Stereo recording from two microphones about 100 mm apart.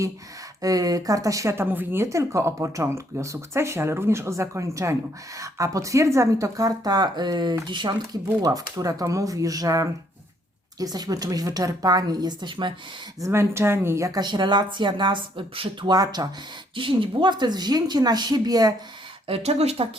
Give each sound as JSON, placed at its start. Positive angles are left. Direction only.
{"t": 0.6, "sound": "speech", "side_deg": -35}
{"t": 1.5, "sound": "speech", "side_deg": -20}
{"t": 13.1, "sound": "speech", "side_deg": -30}
{"t": 14.2, "sound": "a woman's voice", "side_deg": -45}
{"t": 15.9, "sound": "speech", "side_deg": -40}
{"t": 16.7, "sound": "a woman's voice", "side_deg": -60}
{"t": 19.3, "sound": "speech", "side_deg": -90}